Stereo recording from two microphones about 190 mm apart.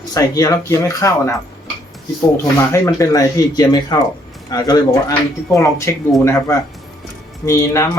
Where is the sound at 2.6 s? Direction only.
15° left (ahead or behind).